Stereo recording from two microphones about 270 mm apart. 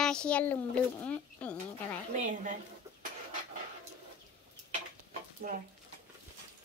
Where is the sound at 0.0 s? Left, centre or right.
Centre.